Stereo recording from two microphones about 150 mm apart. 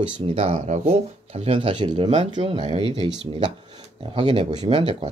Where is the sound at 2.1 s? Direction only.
50° right (ahead or behind).